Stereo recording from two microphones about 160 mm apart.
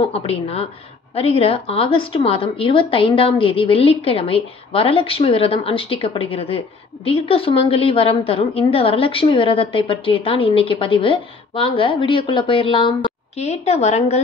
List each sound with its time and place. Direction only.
0.0 s a woman's voice: 35° left (ahead or behind)